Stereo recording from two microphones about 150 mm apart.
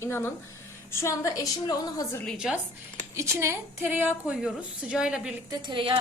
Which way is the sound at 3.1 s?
20° right (ahead or behind).